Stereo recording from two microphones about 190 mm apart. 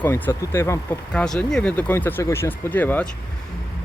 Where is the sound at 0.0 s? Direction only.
15° left (ahead or behind).